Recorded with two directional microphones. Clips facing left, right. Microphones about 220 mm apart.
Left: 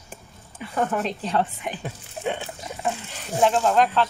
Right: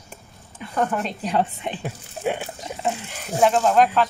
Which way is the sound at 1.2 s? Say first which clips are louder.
Right 2 dB; 20° right (ahead or behind).